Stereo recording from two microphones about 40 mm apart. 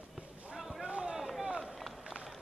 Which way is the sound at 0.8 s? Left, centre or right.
Right.